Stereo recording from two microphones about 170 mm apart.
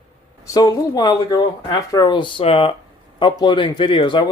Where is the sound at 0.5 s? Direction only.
25° left (ahead or behind).